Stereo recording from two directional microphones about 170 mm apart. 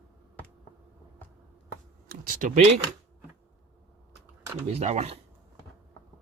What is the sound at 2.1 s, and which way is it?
Speech, 55° right (ahead or behind).